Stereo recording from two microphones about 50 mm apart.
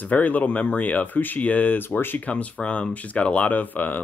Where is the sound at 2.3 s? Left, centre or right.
Left.